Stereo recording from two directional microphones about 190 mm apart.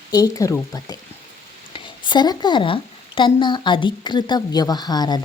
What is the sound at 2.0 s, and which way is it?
Speech, 20° left (ahead or behind).